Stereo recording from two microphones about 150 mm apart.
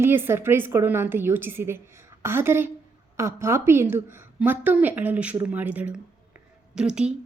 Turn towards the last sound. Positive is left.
turn(degrees=-5)  # may be behind; listen again after turning